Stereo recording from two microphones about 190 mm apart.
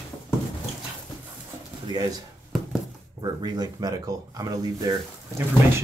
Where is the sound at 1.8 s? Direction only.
20° right (ahead or behind).